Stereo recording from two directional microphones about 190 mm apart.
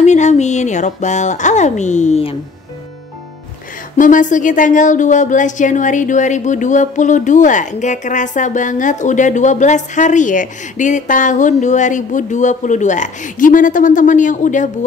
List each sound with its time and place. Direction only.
0.0 s speech: 35° left (ahead or behind)
3.9 s speech: 40° left (ahead or behind)